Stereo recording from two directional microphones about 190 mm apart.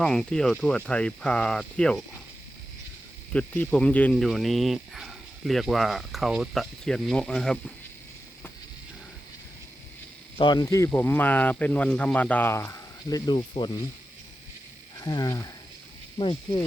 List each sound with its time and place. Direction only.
0.0 s speech: 5° left (ahead or behind)
3.3 s speech: 5° left (ahead or behind)
10.3 s speech: 25° left (ahead or behind)
14.9 s speech: 20° left (ahead or behind)